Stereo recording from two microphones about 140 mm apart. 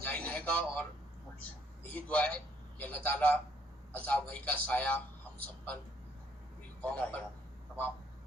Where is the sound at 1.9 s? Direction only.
10° left (ahead or behind).